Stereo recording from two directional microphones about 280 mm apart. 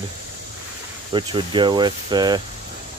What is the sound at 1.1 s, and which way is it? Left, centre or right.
Cricket, centre.